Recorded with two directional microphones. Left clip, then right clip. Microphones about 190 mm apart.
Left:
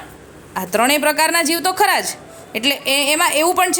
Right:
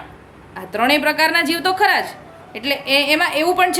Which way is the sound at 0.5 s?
40° left (ahead or behind).